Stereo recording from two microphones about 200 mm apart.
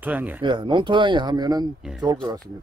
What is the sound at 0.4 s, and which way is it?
Speech, 25° right (ahead or behind).